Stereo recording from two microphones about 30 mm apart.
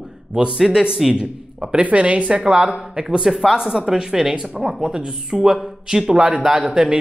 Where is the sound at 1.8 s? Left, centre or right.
Right.